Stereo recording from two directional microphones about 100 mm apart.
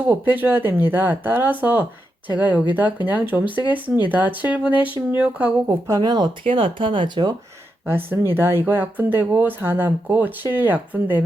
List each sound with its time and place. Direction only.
0.1 s speech: 20° right (ahead or behind)
5.9 s speech: 40° right (ahead or behind)
6.4 s speech: 60° right (ahead or behind)
7.9 s speech: 20° right (ahead or behind)